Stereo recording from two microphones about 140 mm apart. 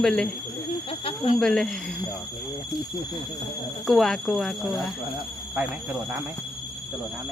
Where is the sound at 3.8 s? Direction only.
Centre (ahead or behind).